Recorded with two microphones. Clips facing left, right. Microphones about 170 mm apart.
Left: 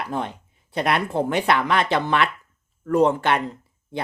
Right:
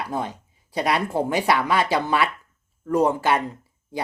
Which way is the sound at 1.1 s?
10° right (ahead or behind).